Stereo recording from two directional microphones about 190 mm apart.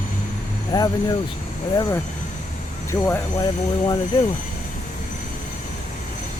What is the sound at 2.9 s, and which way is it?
Speech, 15° left (ahead or behind).